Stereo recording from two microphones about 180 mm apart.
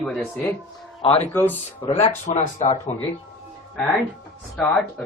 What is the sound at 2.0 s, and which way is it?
Speech, 40° left (ahead or behind).